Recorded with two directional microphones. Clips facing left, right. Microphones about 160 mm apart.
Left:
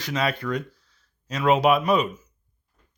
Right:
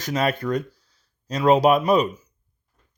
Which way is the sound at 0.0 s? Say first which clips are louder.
Right 3 dB; 45° right (ahead or behind).